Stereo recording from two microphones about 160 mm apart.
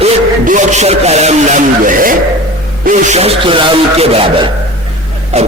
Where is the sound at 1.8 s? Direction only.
60° right (ahead or behind).